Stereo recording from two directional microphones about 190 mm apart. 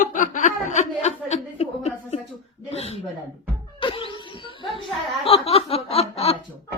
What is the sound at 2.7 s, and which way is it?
Snicker, 35° left (ahead or behind).